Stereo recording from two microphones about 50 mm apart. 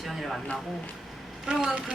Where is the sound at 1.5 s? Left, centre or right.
Centre.